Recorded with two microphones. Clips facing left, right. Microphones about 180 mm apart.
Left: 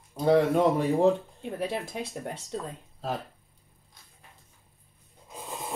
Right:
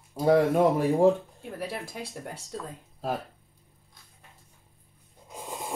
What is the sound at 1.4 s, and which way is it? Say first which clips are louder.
Speech: left 4 dB; 20° left (ahead or behind).